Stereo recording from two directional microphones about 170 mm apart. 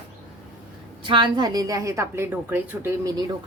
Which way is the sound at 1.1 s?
25° right (ahead or behind).